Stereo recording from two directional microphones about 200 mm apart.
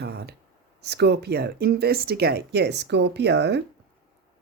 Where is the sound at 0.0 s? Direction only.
55° right (ahead or behind).